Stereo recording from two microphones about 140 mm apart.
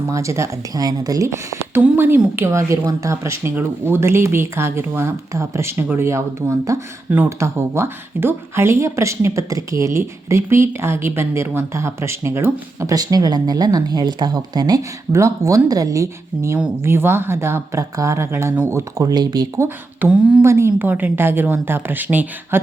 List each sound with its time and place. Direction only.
0.1 s speech: 20° right (ahead or behind)
19.6 s a woman's voice: 10° right (ahead or behind)